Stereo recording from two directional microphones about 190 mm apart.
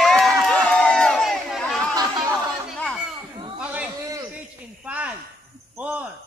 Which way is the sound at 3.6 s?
10° right (ahead or behind).